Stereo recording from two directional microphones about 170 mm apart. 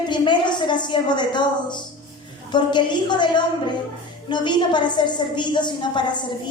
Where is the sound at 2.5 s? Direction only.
25° left (ahead or behind).